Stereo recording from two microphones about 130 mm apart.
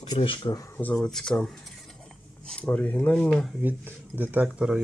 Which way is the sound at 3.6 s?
15° right (ahead or behind).